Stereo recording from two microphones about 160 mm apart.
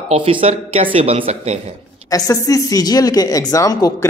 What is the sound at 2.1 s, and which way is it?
A woman's voice, 20° left (ahead or behind).